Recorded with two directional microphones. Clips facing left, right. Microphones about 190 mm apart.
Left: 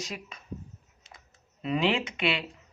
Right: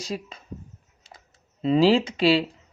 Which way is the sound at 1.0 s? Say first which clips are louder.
Right 4 dB; 35° right (ahead or behind).